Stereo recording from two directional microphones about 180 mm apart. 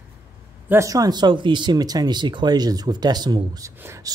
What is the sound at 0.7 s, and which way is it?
Speech, 15° right (ahead or behind).